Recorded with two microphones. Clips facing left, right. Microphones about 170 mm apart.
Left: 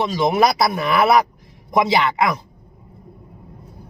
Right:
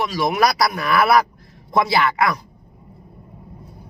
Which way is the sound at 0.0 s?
25° left (ahead or behind).